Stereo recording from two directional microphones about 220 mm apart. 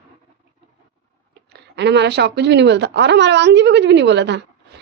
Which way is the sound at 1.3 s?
50° right (ahead or behind).